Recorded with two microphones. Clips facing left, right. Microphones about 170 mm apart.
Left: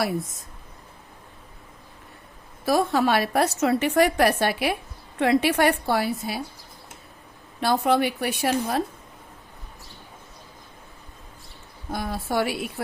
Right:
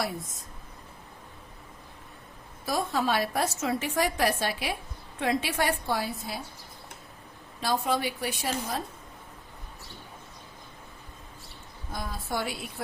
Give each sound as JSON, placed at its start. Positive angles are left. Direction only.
{"t": 2.6, "sound": "a woman's voice", "side_deg": 70}
{"t": 7.6, "sound": "a woman's voice", "side_deg": 65}
{"t": 11.9, "sound": "a woman's voice", "side_deg": 70}